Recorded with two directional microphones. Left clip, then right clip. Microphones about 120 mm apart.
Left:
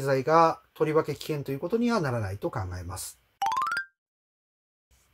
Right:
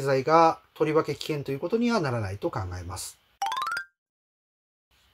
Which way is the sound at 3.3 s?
15° left (ahead or behind).